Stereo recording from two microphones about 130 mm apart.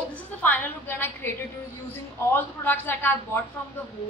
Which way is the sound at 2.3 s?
15° left (ahead or behind).